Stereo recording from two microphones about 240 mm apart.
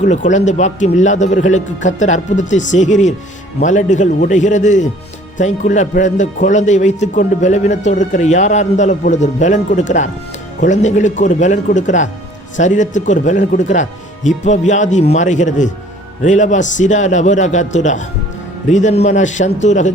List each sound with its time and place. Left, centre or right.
0.0 s speech: left